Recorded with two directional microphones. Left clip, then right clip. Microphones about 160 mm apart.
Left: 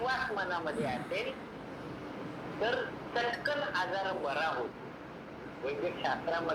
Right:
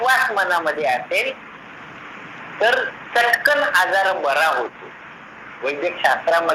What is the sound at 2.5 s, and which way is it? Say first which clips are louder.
A man's voice: right 16 dB; 40° right (ahead or behind).